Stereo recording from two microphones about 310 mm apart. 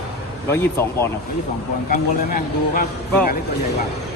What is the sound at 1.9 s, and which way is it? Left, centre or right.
Speech, left.